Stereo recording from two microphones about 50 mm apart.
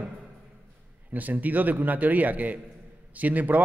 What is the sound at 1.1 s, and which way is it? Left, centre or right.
A man's voice, right.